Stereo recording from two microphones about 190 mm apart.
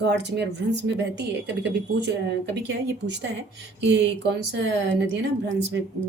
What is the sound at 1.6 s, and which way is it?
A woman's voice, 65° right (ahead or behind).